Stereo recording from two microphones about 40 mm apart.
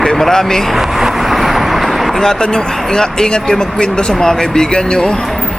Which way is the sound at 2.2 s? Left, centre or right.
Centre.